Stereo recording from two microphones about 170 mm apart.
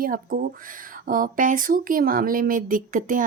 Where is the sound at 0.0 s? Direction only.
55° right (ahead or behind).